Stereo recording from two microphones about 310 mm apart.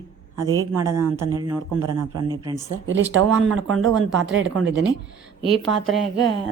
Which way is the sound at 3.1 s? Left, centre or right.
Right.